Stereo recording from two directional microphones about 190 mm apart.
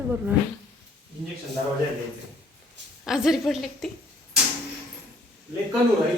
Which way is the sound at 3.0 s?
Centre (ahead or behind).